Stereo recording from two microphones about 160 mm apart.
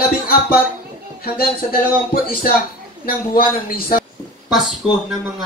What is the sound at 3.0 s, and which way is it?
Speech, 65° left (ahead or behind).